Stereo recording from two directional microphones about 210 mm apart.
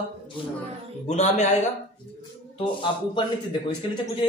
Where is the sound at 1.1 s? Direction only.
35° left (ahead or behind).